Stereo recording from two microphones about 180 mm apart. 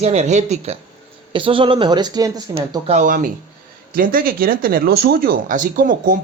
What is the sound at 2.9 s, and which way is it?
Speech, 45° right (ahead or behind).